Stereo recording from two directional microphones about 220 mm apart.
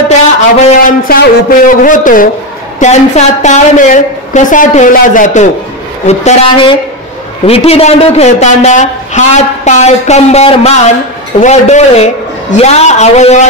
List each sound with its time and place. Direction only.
0.7 s a man's voice: 40° left (ahead or behind)